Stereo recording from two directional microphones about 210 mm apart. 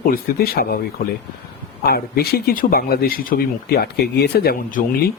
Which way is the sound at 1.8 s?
50° left (ahead or behind).